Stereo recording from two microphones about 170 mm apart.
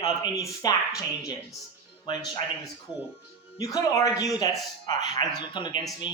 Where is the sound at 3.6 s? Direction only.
20° left (ahead or behind).